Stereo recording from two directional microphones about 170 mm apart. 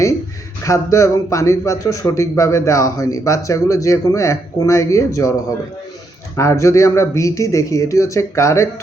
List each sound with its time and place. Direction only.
0.6 s speech: 20° left (ahead or behind)
6.3 s speech: 15° left (ahead or behind)